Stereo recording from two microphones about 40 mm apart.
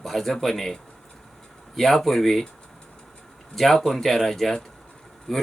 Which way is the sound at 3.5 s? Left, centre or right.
Centre.